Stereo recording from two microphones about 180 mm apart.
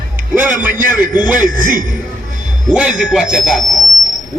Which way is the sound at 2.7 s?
5° right (ahead or behind).